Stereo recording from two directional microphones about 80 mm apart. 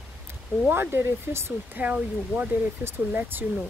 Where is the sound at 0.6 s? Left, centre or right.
Right.